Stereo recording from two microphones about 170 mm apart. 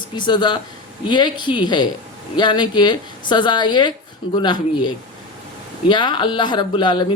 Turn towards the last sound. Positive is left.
turn(degrees=30)  # may be behind; listen again after turning